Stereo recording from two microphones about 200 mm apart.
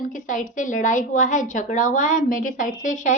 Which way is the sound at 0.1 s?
40° left (ahead or behind).